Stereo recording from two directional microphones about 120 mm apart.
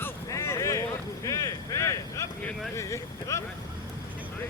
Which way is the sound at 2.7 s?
25° left (ahead or behind).